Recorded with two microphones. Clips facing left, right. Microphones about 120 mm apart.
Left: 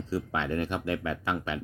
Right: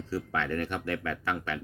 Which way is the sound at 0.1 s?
15° left (ahead or behind).